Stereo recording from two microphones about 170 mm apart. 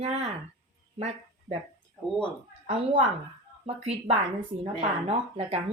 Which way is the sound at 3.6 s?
35° right (ahead or behind).